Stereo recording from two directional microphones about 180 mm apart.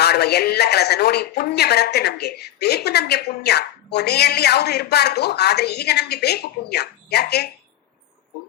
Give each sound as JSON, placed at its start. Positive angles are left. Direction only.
{"t": 0.0, "sound": "speech", "side_deg": 65}